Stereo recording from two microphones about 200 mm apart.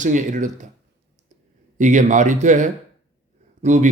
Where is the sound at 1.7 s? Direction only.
40° right (ahead or behind).